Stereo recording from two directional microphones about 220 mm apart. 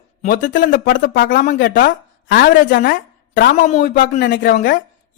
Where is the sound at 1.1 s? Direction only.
50° left (ahead or behind).